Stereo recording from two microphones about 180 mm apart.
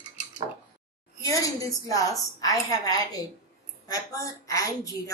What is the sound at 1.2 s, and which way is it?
Speech, 20° left (ahead or behind).